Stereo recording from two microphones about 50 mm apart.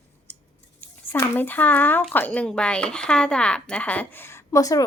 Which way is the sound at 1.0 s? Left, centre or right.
Left.